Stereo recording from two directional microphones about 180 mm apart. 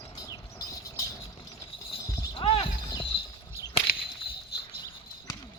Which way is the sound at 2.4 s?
30° left (ahead or behind).